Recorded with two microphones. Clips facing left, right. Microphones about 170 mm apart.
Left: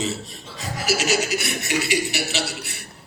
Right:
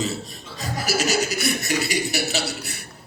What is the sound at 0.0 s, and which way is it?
A man's voice, 40° right (ahead or behind).